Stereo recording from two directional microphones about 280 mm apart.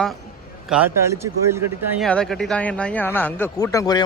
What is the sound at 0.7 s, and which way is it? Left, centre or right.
Speech, centre.